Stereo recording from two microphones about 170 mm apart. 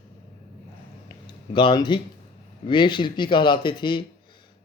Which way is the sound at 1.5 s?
25° left (ahead or behind).